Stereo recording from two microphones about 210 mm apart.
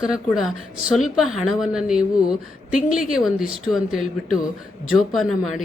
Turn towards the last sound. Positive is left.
turn(degrees=0)  # may be behind; listen again after turning